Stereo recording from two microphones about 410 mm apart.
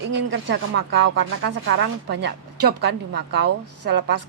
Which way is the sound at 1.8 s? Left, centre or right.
Right.